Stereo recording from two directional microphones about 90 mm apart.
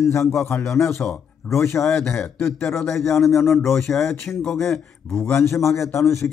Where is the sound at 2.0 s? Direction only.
10° left (ahead or behind).